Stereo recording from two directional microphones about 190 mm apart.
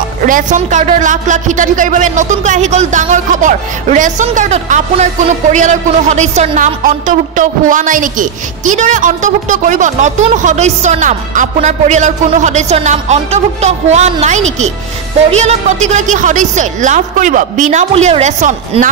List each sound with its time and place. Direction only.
0.3 s speech: 40° right (ahead or behind)